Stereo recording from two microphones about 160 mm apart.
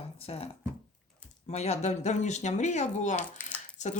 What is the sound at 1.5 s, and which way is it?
Speech, 40° left (ahead or behind).